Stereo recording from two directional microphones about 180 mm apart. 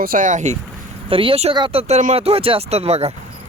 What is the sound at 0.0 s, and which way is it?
Speech, 50° right (ahead or behind).